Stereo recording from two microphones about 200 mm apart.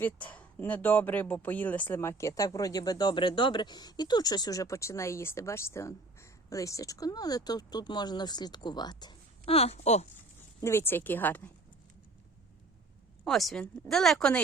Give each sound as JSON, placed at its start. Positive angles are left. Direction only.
{"t": 0.0, "sound": "speech", "side_deg": 5}
{"t": 10.6, "sound": "speech", "side_deg": 10}
{"t": 13.2, "sound": "speech", "side_deg": 0}